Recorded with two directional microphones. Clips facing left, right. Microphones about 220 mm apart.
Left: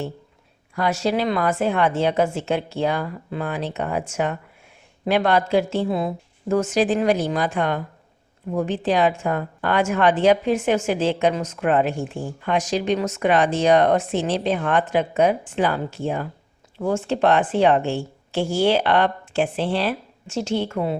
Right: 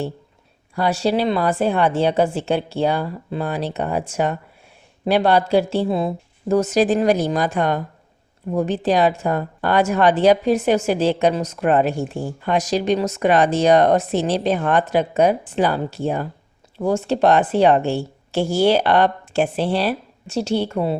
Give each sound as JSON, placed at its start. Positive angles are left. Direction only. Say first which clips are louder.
{"t": 0.8, "sound": "a woman's voice", "louder": "right 2 dB", "side_deg": -30}